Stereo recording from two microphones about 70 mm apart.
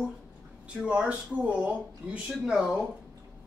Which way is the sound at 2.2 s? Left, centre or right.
Centre.